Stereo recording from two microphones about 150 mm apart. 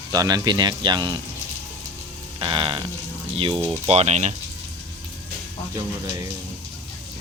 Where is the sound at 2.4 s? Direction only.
35° right (ahead or behind).